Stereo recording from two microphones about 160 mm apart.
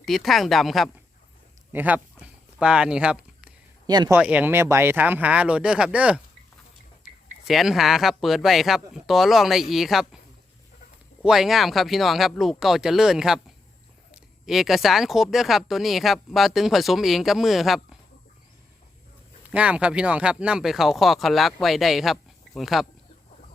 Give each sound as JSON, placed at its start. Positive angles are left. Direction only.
{"t": 0.0, "sound": "speech", "side_deg": 0}
{"t": 3.8, "sound": "speech", "side_deg": -25}
{"t": 4.1, "sound": "speech", "side_deg": -10}
{"t": 7.4, "sound": "speech", "side_deg": 0}
{"t": 11.2, "sound": "speech", "side_deg": 0}
{"t": 19.5, "sound": "speech", "side_deg": -5}